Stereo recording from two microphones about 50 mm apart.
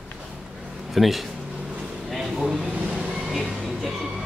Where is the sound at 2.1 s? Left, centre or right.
Centre.